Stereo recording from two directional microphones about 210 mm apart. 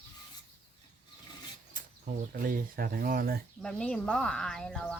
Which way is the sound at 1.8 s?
40° right (ahead or behind).